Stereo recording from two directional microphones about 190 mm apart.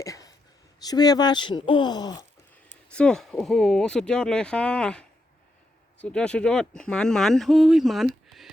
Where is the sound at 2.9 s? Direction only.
5° left (ahead or behind).